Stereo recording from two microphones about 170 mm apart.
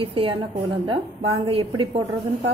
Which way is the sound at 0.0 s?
35° right (ahead or behind).